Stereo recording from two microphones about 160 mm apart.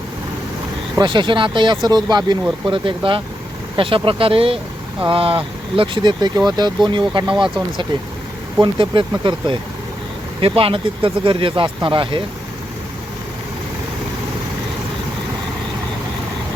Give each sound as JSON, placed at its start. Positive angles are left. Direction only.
{"t": 0.9, "sound": "speech", "side_deg": -30}
{"t": 8.6, "sound": "speech", "side_deg": -30}